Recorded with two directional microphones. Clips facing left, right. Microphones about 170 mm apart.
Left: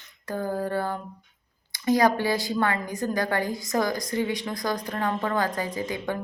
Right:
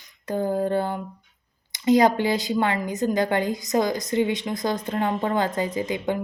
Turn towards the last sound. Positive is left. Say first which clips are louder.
# right 4 dB
turn(degrees=-20)  # may be behind; listen again after turning